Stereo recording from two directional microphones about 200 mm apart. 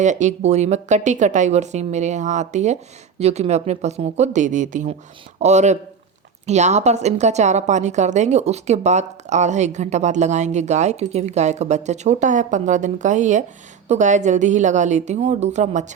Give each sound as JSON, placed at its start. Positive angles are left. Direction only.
{"t": 0.0, "sound": "a woman's voice", "side_deg": -35}